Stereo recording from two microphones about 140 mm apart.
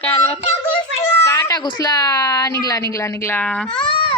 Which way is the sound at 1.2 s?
20° left (ahead or behind).